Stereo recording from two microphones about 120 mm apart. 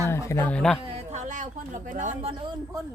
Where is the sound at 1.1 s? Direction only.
80° right.